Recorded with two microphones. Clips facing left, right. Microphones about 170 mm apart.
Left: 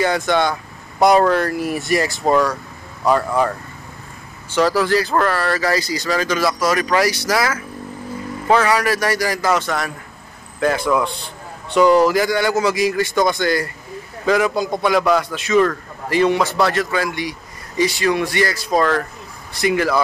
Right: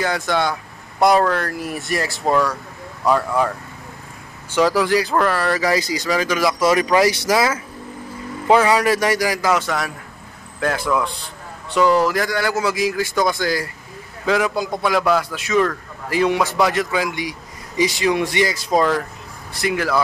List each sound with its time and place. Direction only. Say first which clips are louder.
0.0 s speech: left 3 dB; centre (ahead or behind)
4.6 s a man's voice: even; 10° right (ahead or behind)
6.6 s a man's voice: right 4 dB; 20° right (ahead or behind)
19.5 s speech: left 3 dB; centre (ahead or behind)